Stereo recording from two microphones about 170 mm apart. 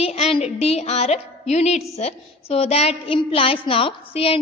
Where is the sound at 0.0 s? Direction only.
35° left (ahead or behind).